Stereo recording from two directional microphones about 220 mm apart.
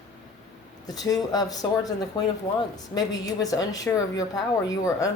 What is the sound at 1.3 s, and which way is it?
Speech, 15° left (ahead or behind).